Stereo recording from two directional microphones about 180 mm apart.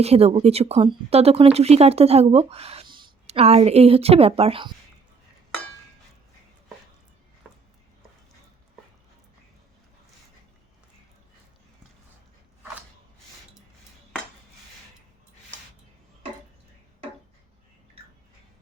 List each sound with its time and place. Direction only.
0.0 s speech: 35° right (ahead or behind)